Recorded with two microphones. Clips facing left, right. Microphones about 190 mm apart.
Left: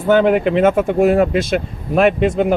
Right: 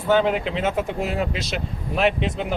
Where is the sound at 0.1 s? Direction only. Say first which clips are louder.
Left 7 dB; 55° left (ahead or behind).